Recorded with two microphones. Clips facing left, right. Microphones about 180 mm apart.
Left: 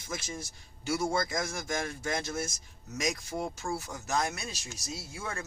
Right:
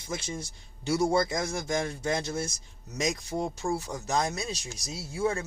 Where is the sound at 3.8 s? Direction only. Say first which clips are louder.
Right 3 dB; 35° right (ahead or behind).